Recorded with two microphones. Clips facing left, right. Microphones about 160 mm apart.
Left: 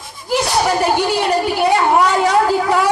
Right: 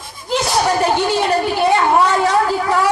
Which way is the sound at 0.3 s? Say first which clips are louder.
Left 1 dB; 10° left (ahead or behind).